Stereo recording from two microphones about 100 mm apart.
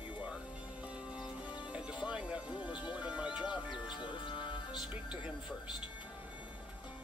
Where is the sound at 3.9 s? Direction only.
55° left (ahead or behind).